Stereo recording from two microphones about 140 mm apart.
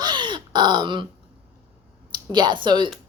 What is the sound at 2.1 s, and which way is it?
Speech, 30° right (ahead or behind).